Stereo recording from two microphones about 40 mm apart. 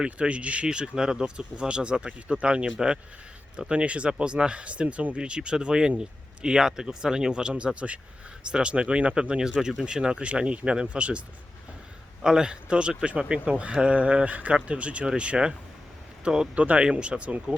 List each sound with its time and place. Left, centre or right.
0.0 s speech: right
0.7 s speech: centre
1.5 s speech: right
12.2 s speech: centre
13.4 s speech: right
16.6 s speech: right
16.8 s speech: right